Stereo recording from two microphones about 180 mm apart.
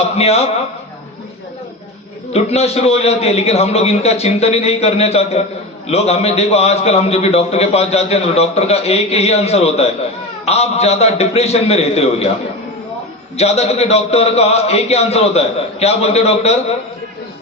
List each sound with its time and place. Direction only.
0.2 s a man's voice: 35° left (ahead or behind)
2.3 s a man's voice: 35° left (ahead or behind)
13.3 s a man's voice: 35° left (ahead or behind)